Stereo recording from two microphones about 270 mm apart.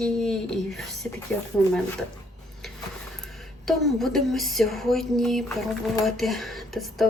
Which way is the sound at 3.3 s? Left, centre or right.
Centre.